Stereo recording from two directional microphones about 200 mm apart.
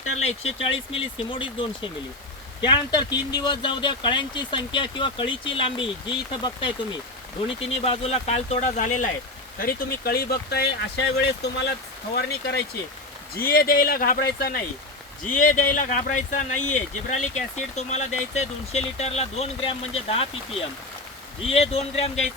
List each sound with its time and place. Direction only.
0.2 s speech: 30° left (ahead or behind)
2.6 s speech: 20° left (ahead or behind); by 9.0 s 40° left (ahead or behind)
9.6 s speech: 50° left (ahead or behind); by 22.1 s 30° left (ahead or behind)